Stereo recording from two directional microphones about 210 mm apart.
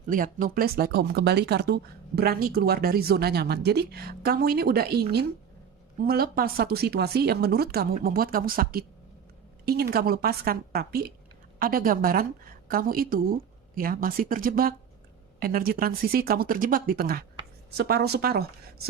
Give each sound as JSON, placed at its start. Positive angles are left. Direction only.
{"t": 0.1, "sound": "speech", "side_deg": -40}